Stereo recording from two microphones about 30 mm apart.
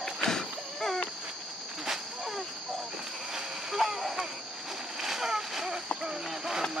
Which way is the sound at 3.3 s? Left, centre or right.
Centre.